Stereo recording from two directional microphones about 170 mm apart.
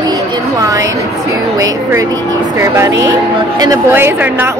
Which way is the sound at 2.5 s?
15° right (ahead or behind).